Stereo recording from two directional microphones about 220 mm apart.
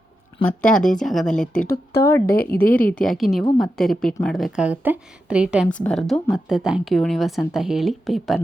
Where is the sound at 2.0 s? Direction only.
10° left (ahead or behind).